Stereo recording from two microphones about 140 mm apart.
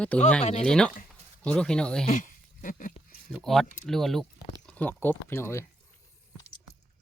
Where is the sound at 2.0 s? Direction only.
65° left (ahead or behind).